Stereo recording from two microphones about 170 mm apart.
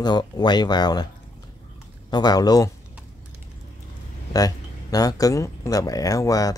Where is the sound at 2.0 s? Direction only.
25° left (ahead or behind).